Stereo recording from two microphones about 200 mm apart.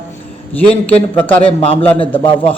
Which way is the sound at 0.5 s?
5° left (ahead or behind).